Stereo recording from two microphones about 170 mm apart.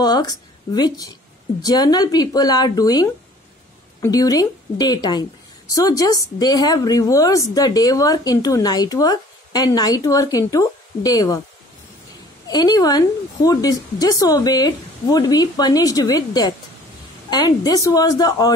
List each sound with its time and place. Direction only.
0.0 s a woman's voice: 25° left (ahead or behind)
12.4 s a woman's voice: 25° left (ahead or behind)